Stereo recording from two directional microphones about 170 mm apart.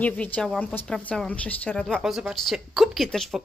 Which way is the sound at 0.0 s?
10° left (ahead or behind).